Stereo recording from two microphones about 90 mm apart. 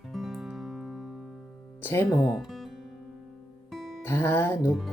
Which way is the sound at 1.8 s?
25° left (ahead or behind).